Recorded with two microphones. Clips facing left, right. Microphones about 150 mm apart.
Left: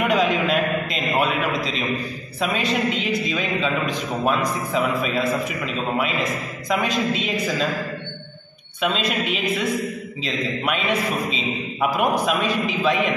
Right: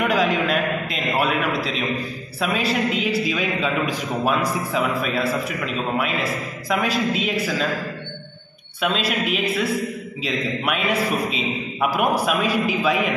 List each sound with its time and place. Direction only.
0.0 s a man's voice: centre (ahead or behind)
8.8 s a man's voice: centre (ahead or behind)